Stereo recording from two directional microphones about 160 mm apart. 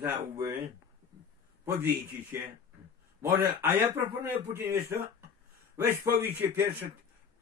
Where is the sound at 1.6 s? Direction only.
15° right (ahead or behind).